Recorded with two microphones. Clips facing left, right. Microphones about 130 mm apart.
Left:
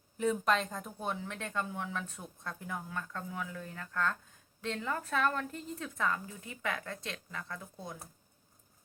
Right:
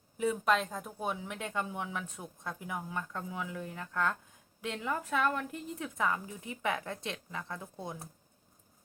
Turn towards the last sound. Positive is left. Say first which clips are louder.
# right 3 dB
turn(degrees=-20)  # may be behind; listen again after turning